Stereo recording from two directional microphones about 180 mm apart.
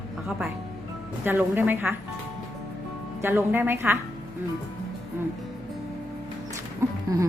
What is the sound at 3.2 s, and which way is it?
Speech, 10° right (ahead or behind).